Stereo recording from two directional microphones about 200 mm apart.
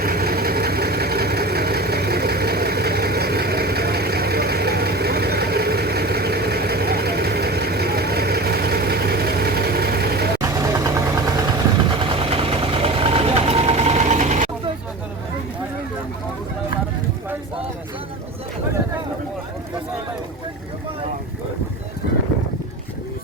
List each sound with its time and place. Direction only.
0.0 s vehicle: 50° right (ahead or behind)
10.4 s vehicle: 15° right (ahead or behind); by 14.5 s 40° right (ahead or behind)